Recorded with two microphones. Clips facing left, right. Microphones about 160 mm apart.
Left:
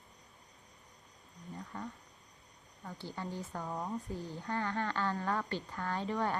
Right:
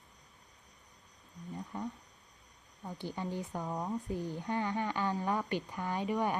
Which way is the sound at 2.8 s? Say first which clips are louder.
Right 3 dB; 15° right (ahead or behind).